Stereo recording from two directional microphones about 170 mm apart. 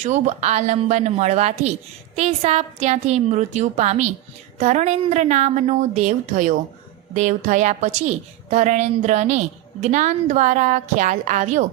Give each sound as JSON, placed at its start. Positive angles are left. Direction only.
{"t": 0.0, "sound": "a woman's voice", "side_deg": -45}